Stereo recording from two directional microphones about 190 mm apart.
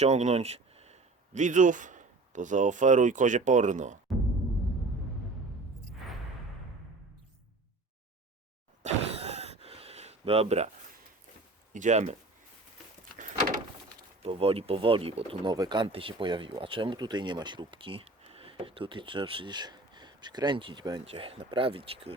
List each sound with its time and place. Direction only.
0.0 s speech: 35° right (ahead or behind)
8.8 s a sound: 35° right (ahead or behind)
11.7 s speech: 40° right (ahead or behind)
14.2 s speech: 30° right (ahead or behind)